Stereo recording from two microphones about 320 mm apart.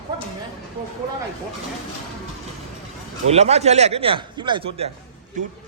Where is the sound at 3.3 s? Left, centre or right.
Centre.